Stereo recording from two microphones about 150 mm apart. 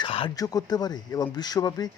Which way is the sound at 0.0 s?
35° left (ahead or behind).